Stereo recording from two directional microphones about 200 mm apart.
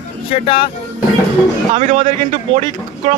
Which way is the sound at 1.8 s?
40° right (ahead or behind).